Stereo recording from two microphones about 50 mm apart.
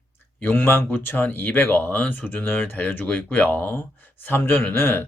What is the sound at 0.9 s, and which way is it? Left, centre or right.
Speech, left.